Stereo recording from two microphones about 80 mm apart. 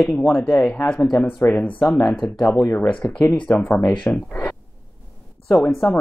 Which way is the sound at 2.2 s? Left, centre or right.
Left.